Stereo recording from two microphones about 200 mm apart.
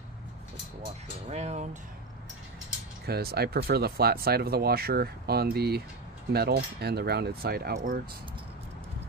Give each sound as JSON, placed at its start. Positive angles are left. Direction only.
{"t": 1.3, "sound": "speech", "side_deg": -35}
{"t": 3.1, "sound": "speech", "side_deg": -50}